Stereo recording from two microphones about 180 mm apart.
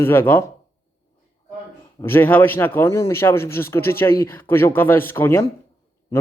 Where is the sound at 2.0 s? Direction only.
10° left (ahead or behind).